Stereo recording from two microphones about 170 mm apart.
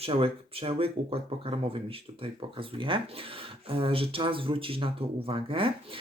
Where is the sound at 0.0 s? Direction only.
35° right (ahead or behind).